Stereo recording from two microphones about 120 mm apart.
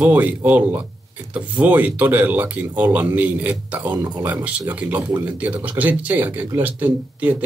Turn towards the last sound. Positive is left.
turn(degrees=-15)  # may be behind; listen again after turning